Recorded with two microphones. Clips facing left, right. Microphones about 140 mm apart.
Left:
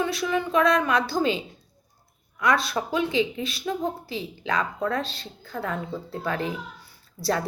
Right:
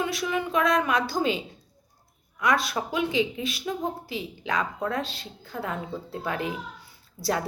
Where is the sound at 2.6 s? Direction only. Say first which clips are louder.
Left 2 dB; 15° right (ahead or behind).